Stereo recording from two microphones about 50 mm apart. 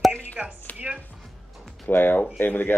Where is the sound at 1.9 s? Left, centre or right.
Left.